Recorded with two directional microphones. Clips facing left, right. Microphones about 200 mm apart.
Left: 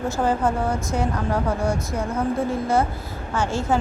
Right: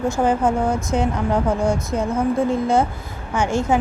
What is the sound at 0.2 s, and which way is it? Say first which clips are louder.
A woman's voice: right 2 dB; 15° right (ahead or behind).